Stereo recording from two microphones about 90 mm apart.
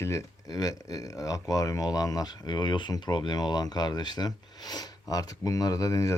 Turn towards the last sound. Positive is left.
turn(degrees=35)  # may be behind; listen again after turning